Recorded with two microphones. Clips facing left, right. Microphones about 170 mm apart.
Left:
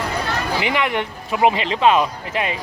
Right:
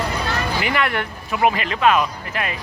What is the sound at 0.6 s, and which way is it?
Speech, 20° left (ahead or behind).